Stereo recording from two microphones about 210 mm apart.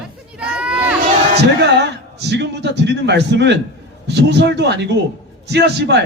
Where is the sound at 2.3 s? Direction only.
55° right (ahead or behind).